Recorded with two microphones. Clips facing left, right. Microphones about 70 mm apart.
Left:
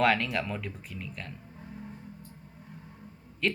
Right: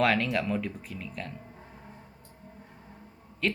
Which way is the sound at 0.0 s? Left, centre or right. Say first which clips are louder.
Even; centre.